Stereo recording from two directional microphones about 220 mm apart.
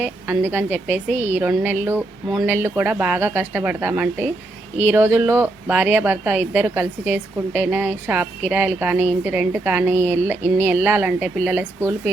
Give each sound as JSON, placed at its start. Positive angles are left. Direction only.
{"t": 0.0, "sound": "speech", "side_deg": -10}
{"t": 1.1, "sound": "a woman's voice", "side_deg": 30}
{"t": 1.4, "sound": "speech", "side_deg": -10}